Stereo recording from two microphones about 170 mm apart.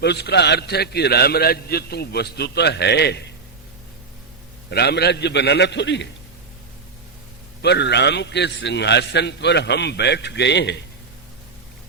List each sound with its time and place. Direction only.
0.0 s a man's voice: 75° left (ahead or behind)
4.7 s a man's voice: 70° left (ahead or behind); by 6.1 s 90° left
7.6 s a man's voice: 80° left